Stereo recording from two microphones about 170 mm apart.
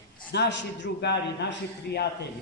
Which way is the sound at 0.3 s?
85° left.